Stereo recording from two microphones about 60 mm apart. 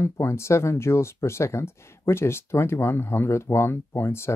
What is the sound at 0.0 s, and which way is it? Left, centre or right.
Speech, left.